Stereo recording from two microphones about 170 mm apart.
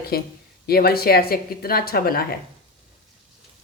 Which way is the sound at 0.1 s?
65° left (ahead or behind).